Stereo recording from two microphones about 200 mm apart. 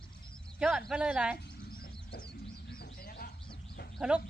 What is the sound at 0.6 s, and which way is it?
Speech, centre (ahead or behind).